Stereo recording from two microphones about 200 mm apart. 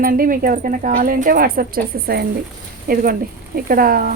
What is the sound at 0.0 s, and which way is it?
Speech, 45° right (ahead or behind).